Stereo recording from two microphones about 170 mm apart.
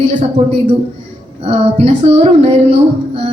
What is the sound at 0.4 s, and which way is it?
Female singing, 35° right (ahead or behind).